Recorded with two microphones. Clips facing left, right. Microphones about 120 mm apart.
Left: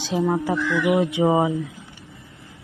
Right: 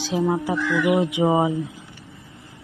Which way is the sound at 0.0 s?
Centre (ahead or behind).